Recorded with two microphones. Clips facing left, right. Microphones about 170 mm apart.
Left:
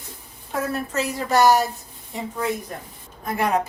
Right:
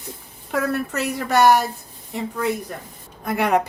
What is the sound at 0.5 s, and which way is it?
Speech, 65° right (ahead or behind).